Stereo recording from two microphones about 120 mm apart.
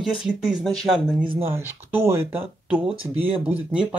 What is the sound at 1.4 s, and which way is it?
Speech, 20° right (ahead or behind).